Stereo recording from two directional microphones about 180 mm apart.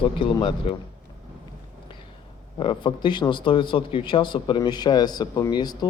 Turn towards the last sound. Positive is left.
turn(degrees=25)  # may be behind; listen again after turning